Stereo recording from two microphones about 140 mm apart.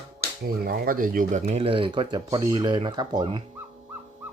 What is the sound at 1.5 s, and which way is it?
Speech, 40° right (ahead or behind).